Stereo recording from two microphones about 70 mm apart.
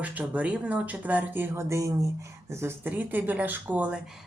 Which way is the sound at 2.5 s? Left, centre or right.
Right.